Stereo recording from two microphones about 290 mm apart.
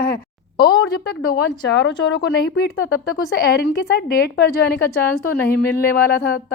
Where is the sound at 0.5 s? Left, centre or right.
Left.